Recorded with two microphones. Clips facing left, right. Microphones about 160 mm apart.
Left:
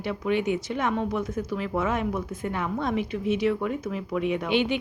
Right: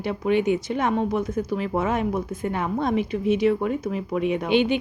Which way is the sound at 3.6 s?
30° right (ahead or behind).